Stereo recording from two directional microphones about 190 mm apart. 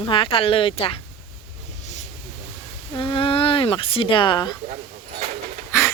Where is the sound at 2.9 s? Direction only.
25° left (ahead or behind).